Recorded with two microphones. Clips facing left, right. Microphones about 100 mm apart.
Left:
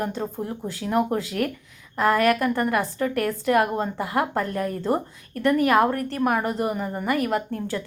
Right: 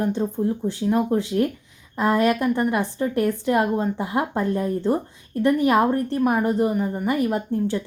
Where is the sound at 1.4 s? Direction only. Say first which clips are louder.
Right 3 dB; 75° left (ahead or behind).